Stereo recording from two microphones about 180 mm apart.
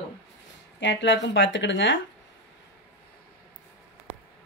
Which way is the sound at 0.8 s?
90° left.